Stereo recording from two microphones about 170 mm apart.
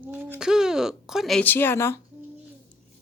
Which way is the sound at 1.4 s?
10° left (ahead or behind).